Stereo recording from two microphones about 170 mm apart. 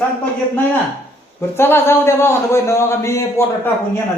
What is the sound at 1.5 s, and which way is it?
A man's voice, 15° left (ahead or behind).